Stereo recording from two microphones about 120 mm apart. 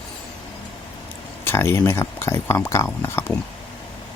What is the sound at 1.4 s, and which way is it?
Speech, 20° left (ahead or behind).